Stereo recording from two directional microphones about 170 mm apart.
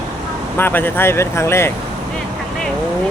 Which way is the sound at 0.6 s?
10° left (ahead or behind).